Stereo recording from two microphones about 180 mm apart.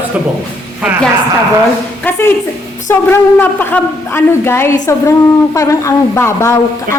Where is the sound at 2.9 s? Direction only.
10° left (ahead or behind).